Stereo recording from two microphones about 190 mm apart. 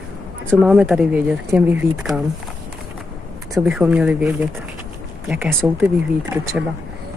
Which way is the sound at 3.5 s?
5° right (ahead or behind).